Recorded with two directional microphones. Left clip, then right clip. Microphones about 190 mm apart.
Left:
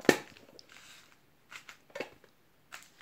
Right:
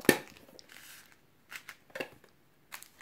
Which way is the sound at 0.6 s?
20° right (ahead or behind).